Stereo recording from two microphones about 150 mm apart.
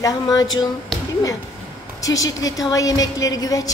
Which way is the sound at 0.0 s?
25° left (ahead or behind).